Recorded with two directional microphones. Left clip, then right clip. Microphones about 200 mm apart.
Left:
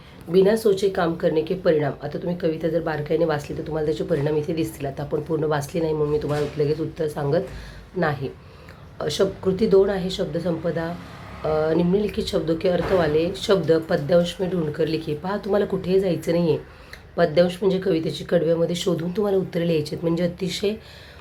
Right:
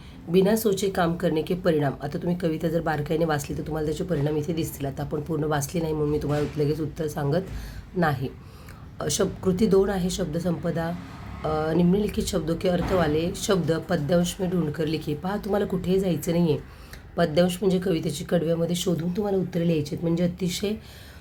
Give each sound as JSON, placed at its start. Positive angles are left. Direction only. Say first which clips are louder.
{"t": 0.3, "sound": "speech", "louder": "left 4 dB", "side_deg": -20}